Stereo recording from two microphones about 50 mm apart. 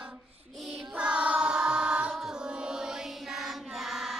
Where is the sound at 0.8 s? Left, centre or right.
Centre.